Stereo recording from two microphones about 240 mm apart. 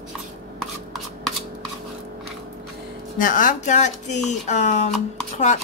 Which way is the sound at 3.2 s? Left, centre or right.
Left.